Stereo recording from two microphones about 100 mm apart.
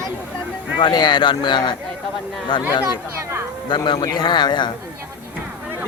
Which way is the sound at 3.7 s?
45° left (ahead or behind).